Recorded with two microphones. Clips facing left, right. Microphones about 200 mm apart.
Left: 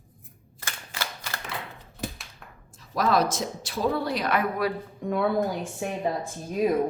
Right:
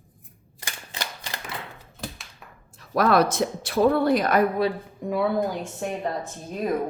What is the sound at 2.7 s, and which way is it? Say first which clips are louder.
Speech: right 4 dB; 60° right (ahead or behind).